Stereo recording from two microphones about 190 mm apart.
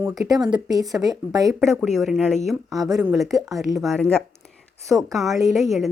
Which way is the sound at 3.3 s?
20° right (ahead or behind).